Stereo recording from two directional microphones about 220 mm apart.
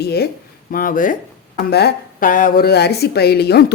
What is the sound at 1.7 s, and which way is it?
Speech, 50° left (ahead or behind).